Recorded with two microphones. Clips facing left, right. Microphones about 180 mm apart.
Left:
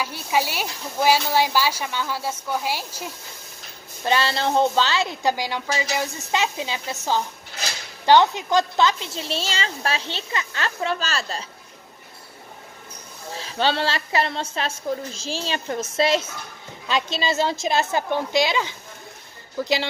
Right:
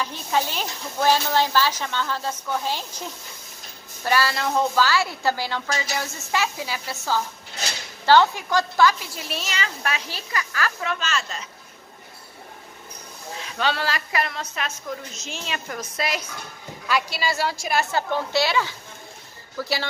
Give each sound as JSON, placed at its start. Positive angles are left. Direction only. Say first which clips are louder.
{"t": 0.0, "sound": "speech", "louder": "left 1 dB", "side_deg": 10}
{"t": 4.0, "sound": "a woman's voice", "louder": "left 1 dB", "side_deg": 25}
{"t": 13.3, "sound": "a woman's voice", "louder": "left 3 dB", "side_deg": 30}